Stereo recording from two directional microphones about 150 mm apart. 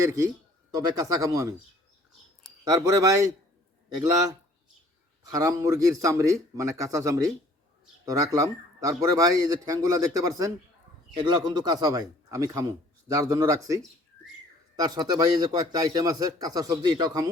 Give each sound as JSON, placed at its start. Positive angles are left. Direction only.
{"t": 0.0, "sound": "a man's voice", "side_deg": -20}
{"t": 2.6, "sound": "a man's voice", "side_deg": -20}
{"t": 5.4, "sound": "a man's voice", "side_deg": -20}